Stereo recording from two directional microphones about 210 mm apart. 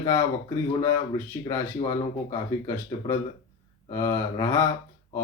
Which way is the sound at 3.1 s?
25° left (ahead or behind).